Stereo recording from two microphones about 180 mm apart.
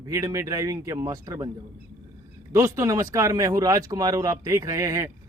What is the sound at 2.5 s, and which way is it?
Speech, 15° right (ahead or behind).